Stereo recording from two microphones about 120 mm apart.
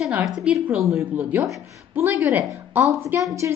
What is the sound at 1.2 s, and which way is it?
A woman's voice, 20° right (ahead or behind).